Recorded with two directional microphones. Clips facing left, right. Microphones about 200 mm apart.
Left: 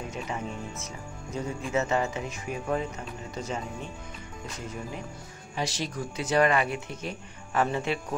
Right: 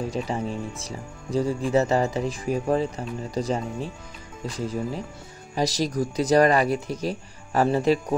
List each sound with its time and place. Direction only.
0.1 s speech: 35° right (ahead or behind)